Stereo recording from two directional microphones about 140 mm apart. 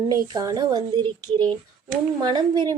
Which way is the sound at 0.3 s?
30° right (ahead or behind).